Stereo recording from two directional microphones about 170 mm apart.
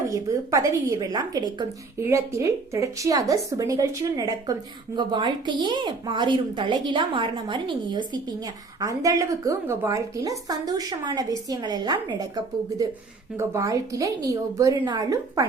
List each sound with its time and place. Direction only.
0.1 s a woman's voice: 20° right (ahead or behind)